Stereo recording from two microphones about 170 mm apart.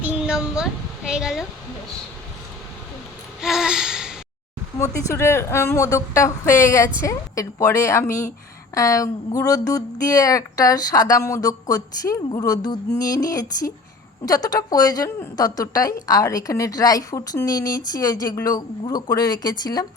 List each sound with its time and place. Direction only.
0.0 s speech: 5° right (ahead or behind)
3.4 s a sound: 5° right (ahead or behind)
4.8 s a woman's voice: 15° left (ahead or behind)